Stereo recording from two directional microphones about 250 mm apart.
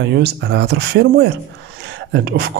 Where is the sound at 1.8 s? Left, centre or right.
Right.